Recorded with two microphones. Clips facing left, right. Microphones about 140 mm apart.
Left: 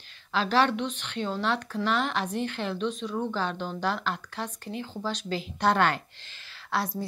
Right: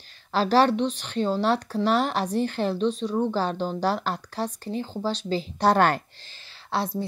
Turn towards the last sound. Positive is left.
turn(degrees=-30)  # may be behind; listen again after turning